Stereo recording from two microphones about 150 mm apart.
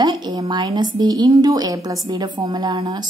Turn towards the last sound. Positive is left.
turn(degrees=-30)  # may be behind; listen again after turning